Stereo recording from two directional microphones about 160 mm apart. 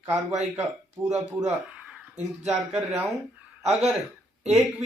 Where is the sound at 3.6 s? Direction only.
40° right (ahead or behind).